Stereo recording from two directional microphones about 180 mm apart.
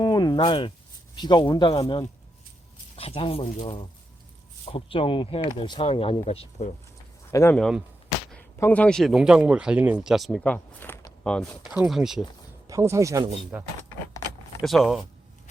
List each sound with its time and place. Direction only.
0.0 s a sound: 20° left (ahead or behind)
1.1 s speech: 25° left (ahead or behind)
7.3 s speech: 15° left (ahead or behind); by 12.2 s centre (ahead or behind)
12.6 s speech: 15° right (ahead or behind); by 15.0 s centre (ahead or behind)